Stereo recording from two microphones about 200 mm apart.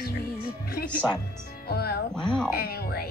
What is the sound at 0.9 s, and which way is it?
Speech, 5° left (ahead or behind).